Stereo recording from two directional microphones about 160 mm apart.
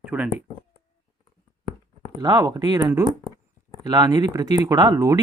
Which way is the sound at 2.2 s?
25° right (ahead or behind).